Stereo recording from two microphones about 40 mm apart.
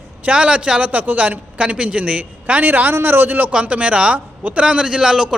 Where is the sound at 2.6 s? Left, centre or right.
Right.